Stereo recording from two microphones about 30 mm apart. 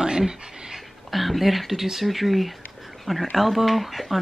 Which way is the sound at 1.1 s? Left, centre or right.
Centre.